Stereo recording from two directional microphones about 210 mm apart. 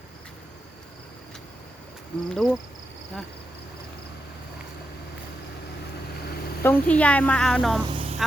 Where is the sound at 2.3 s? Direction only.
Centre (ahead or behind).